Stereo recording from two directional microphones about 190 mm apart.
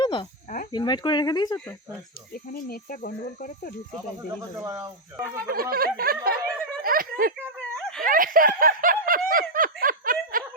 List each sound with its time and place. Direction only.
0.0 s cricket: 25° left (ahead or behind)
0.7 s speech: 25° left (ahead or behind)
2.5 s speech: 50° left (ahead or behind)
4.6 s speech: 15° right (ahead or behind)
5.4 s snicker: 50° right (ahead or behind)
6.8 s a sound: 50° right (ahead or behind)
7.3 s a sound: 5° left (ahead or behind)
8.0 s snicker: 45° right (ahead or behind)